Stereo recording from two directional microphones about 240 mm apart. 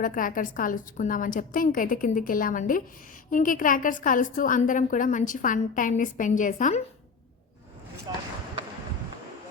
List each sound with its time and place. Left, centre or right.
0.0 s a woman's voice: left
8.1 s speech: centre